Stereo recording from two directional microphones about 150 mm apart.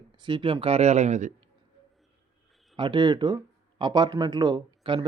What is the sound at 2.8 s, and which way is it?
Speech, 30° right (ahead or behind).